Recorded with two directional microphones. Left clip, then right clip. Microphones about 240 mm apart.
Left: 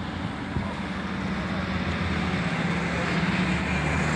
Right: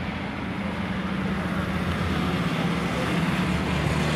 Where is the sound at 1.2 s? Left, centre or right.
Right.